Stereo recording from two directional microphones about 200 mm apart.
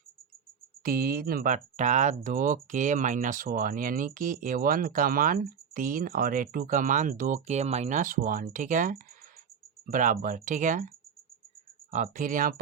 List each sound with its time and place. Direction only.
0.9 s speech: 50° right (ahead or behind)
11.9 s speech: 35° right (ahead or behind)